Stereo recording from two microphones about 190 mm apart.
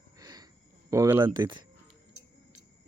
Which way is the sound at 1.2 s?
25° right (ahead or behind).